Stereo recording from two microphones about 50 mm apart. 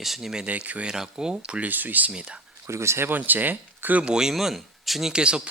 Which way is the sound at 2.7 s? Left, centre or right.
Right.